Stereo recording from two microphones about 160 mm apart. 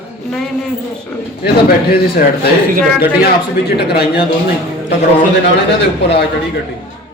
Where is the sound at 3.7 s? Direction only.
90° left.